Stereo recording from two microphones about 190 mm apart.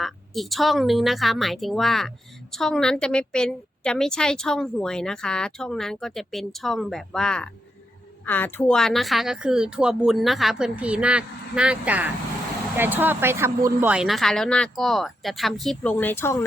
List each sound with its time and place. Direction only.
0.0 s a woman's voice: centre (ahead or behind)